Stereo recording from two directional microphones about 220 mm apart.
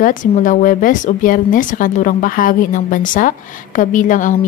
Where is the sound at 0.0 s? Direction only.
35° left (ahead or behind).